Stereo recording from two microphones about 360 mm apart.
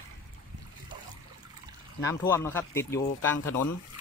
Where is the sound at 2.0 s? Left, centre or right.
Centre.